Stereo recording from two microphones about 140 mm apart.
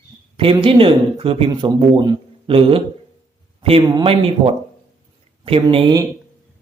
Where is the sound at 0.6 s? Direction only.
40° right (ahead or behind).